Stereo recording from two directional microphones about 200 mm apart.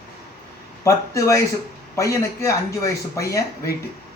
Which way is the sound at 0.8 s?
15° left (ahead or behind).